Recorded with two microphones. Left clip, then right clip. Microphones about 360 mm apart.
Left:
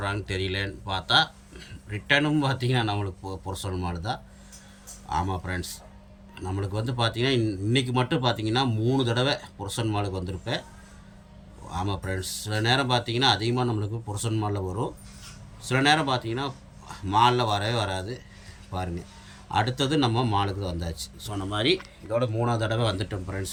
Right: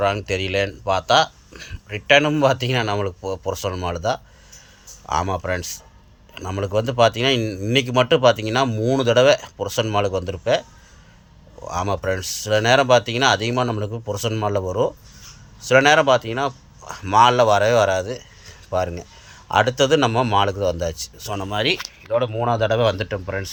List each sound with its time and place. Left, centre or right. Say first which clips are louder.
0.0 s a man's voice: right 9 dB; centre
11.7 s a man's voice: right 9 dB; centre